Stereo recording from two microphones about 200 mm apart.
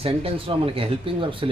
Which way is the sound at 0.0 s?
30° right (ahead or behind).